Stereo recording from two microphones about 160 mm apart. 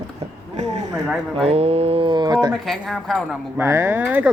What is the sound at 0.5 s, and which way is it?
Speech, 45° right (ahead or behind).